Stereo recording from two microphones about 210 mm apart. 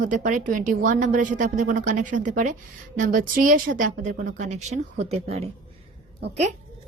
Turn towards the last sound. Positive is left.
turn(degrees=-30)  # may be behind; listen again after turning